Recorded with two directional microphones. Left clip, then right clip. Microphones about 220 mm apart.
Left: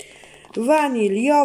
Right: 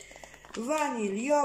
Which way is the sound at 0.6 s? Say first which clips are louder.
Left 12 dB; 50° left (ahead or behind).